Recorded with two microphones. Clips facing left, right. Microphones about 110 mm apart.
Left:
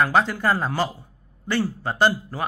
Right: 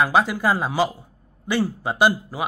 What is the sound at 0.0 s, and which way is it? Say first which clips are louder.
Speech: right 1 dB; 10° right (ahead or behind).